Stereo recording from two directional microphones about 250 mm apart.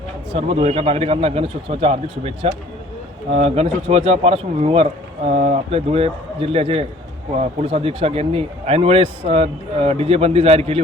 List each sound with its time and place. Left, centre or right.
0.3 s speech: right